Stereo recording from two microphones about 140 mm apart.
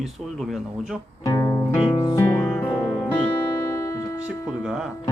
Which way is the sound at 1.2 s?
25° left (ahead or behind).